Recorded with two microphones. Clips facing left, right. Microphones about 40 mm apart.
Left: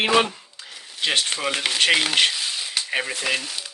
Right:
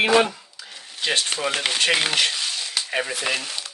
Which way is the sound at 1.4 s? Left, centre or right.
Centre.